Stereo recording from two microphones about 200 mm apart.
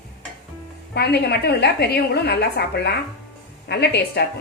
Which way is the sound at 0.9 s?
55° left (ahead or behind).